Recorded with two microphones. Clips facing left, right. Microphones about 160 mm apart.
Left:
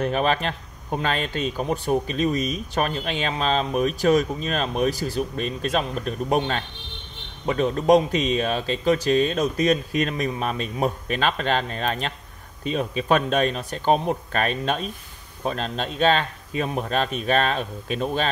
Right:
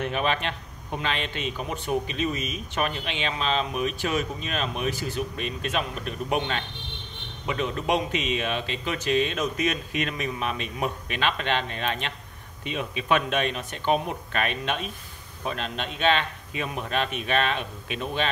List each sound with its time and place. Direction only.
0.0 s speech: 40° left (ahead or behind)